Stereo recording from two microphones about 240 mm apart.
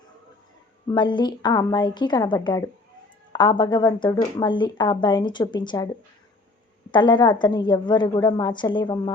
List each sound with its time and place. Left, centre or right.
0.9 s a woman's voice: centre
6.9 s speech: centre